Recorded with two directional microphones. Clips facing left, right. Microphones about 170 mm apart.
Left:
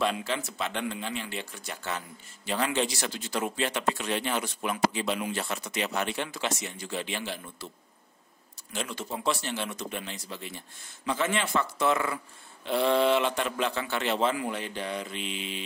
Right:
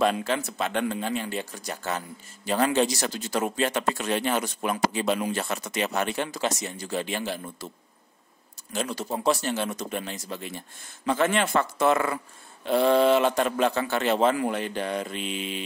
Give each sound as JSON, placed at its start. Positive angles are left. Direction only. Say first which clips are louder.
{"t": 0.0, "sound": "a man's voice", "louder": "right 5 dB", "side_deg": -50}
{"t": 8.7, "sound": "a man's voice", "louder": "right 5 dB", "side_deg": -40}